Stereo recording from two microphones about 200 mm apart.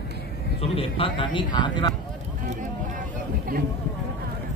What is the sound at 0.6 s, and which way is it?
Speech, 30° left (ahead or behind).